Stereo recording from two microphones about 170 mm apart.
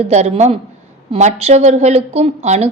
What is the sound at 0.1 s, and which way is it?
A woman's voice, 40° right (ahead or behind).